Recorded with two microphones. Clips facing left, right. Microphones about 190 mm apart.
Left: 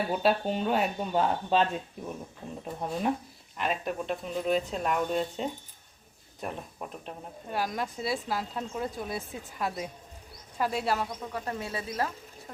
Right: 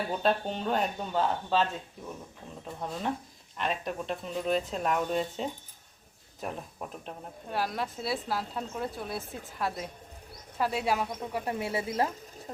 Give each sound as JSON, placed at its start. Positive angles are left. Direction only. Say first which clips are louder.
{"t": 0.1, "sound": "speech", "louder": "left 1 dB", "side_deg": 10}
{"t": 2.8, "sound": "speech", "louder": "left 4 dB", "side_deg": 15}
{"t": 3.6, "sound": "a woman's voice", "louder": "left 1 dB", "side_deg": 5}